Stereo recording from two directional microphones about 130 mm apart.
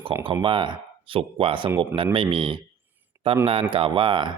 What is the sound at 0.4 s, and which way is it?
Speech, 40° right (ahead or behind).